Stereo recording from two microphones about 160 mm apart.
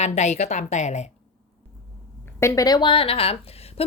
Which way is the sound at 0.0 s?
45° left (ahead or behind).